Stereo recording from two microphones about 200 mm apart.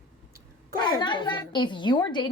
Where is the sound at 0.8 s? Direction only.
20° left (ahead or behind).